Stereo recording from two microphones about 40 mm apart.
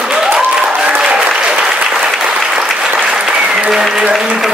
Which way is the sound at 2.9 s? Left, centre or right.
Right.